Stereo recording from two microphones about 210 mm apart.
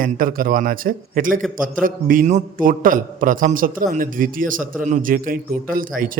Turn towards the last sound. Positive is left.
turn(degrees=-40)  # may be behind; listen again after turning